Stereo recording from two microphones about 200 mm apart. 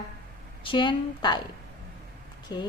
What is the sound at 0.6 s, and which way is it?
Speech, 25° left (ahead or behind).